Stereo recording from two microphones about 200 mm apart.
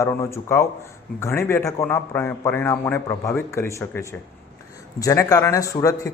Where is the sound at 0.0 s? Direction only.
15° left (ahead or behind).